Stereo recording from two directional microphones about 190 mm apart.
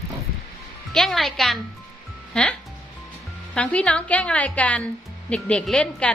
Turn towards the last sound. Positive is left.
turn(degrees=5)  # may be behind; listen again after turning